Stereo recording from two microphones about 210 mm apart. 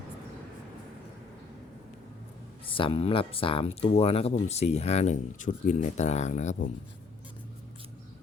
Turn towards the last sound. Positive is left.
turn(degrees=35)  # may be behind; listen again after turning